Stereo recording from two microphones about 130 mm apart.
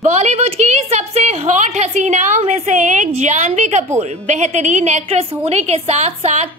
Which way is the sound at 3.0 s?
60° right (ahead or behind).